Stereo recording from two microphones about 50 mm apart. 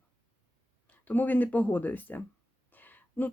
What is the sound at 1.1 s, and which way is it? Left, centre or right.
Speech, left.